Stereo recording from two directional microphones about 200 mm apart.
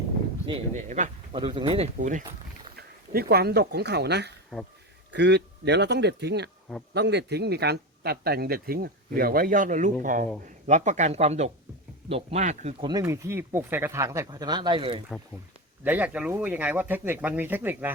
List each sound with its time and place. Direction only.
0.4 s speech: 30° right (ahead or behind)
1.4 s speech: 25° right (ahead or behind)
2.7 s speech: 50° right (ahead or behind); by 12.7 s 35° right (ahead or behind)
12.8 s speech: 15° right (ahead or behind)
15.8 s speech: 10° right (ahead or behind)